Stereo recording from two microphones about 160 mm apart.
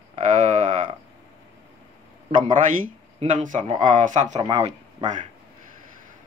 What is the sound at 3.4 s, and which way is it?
Speech, 50° right (ahead or behind).